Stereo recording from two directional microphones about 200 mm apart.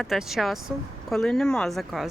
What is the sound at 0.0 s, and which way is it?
Speech, centre (ahead or behind).